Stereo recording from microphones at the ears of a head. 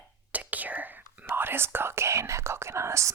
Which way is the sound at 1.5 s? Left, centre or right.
Right.